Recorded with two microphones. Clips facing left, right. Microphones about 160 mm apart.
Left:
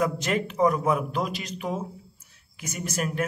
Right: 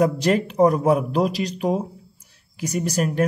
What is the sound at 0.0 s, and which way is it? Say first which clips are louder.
Speech: right 7 dB; 35° right (ahead or behind).